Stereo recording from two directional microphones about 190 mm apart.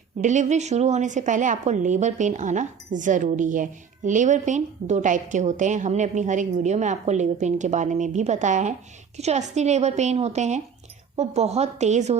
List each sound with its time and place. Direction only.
0.2 s a woman's voice: 40° right (ahead or behind)